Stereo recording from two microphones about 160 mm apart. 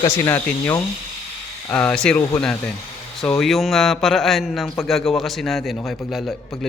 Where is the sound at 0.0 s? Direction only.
15° left (ahead or behind).